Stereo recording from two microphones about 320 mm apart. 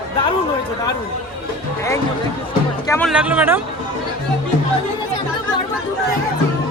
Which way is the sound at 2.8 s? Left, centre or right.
Centre.